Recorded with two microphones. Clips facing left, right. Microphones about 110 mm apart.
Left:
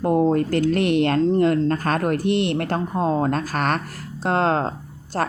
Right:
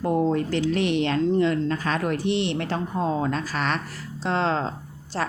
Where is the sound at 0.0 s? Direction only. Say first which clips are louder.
Left 4 dB; 45° left (ahead or behind).